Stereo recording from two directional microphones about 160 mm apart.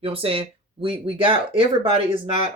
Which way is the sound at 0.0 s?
35° right (ahead or behind).